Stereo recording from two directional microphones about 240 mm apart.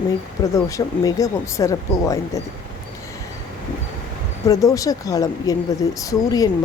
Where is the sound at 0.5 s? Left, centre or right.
Centre.